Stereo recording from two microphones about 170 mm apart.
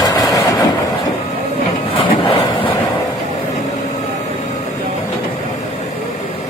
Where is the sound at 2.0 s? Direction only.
30° left (ahead or behind).